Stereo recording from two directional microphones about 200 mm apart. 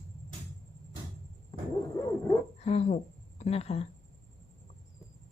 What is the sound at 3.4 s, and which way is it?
Speech, 30° left (ahead or behind).